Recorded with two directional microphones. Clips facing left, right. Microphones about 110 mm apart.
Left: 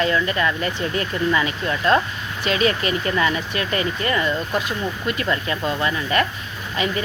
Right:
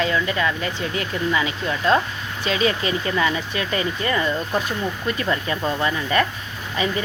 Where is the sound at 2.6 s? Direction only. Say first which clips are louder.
Left 1 dB; 15° right (ahead or behind).